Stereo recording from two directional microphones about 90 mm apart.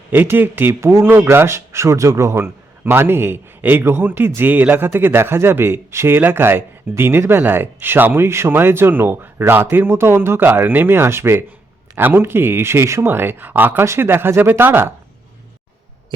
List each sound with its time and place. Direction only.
0.1 s speech: 20° right (ahead or behind)